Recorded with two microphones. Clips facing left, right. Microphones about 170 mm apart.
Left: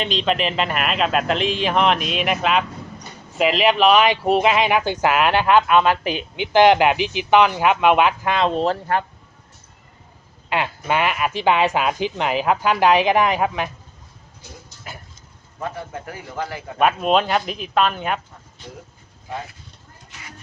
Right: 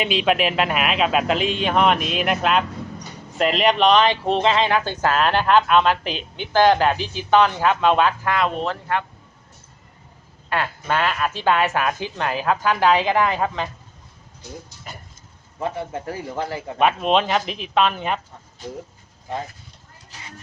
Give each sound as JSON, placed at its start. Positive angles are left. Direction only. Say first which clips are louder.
{"t": 0.0, "sound": "speech", "louder": "right 2 dB", "side_deg": -10}
{"t": 10.5, "sound": "speech", "louder": "left 1 dB", "side_deg": 15}
{"t": 15.6, "sound": "speech", "louder": "right 3 dB", "side_deg": -25}
{"t": 16.7, "sound": "speech", "louder": "left 1 dB", "side_deg": 5}
{"t": 20.1, "sound": "a sound", "louder": "right 1 dB", "side_deg": -30}